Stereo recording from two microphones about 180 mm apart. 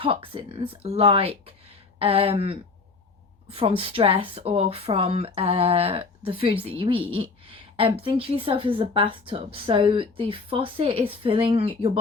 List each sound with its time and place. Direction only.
0.0 s a woman's voice: 30° right (ahead or behind)